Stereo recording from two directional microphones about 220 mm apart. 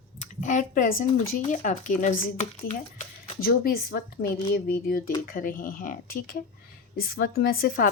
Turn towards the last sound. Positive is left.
turn(degrees=40)  # may be behind; listen again after turning